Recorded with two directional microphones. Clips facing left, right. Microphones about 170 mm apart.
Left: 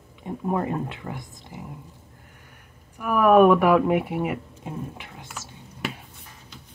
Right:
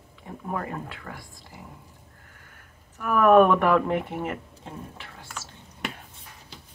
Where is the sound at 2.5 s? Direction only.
10° left (ahead or behind).